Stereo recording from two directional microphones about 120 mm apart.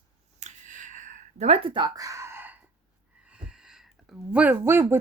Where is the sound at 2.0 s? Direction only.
25° right (ahead or behind); by 4.1 s 5° right (ahead or behind).